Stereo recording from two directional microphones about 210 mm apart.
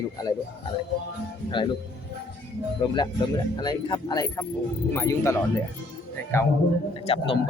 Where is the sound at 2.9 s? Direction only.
20° left (ahead or behind).